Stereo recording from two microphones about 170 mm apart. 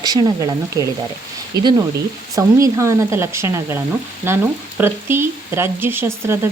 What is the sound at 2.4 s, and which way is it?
Speech, 15° right (ahead or behind).